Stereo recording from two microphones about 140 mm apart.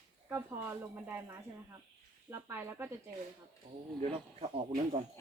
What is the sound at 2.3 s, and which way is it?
Speech, 15° right (ahead or behind).